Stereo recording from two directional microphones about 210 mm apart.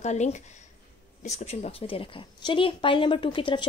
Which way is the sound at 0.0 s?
35° left (ahead or behind).